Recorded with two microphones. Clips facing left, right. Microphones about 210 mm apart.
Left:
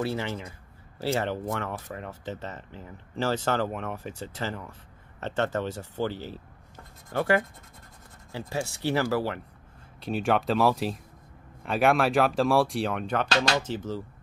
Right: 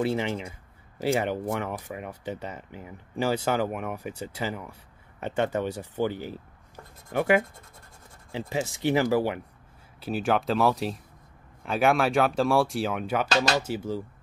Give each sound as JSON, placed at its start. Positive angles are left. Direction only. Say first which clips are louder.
{"t": 0.0, "sound": "speech", "louder": "right 3 dB", "side_deg": -15}
{"t": 9.9, "sound": "speech", "louder": "even", "side_deg": -5}